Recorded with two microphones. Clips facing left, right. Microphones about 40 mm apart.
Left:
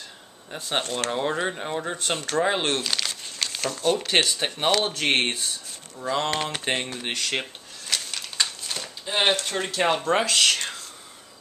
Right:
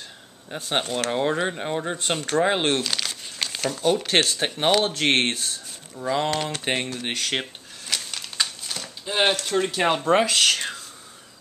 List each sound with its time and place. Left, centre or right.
0.7 s speech: centre
2.8 s speech: centre
4.8 s speech: centre
5.9 s speech: centre
6.3 s speech: centre
6.6 s speech: centre
7.9 s a sound: centre
9.7 s speech: centre